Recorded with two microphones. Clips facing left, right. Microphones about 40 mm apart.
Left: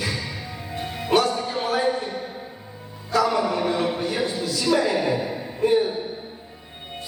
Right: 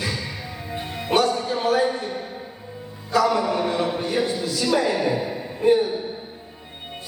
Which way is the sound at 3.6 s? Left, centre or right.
Centre.